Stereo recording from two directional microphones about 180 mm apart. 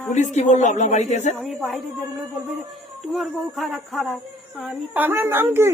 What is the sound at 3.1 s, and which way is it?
Speech, centre (ahead or behind).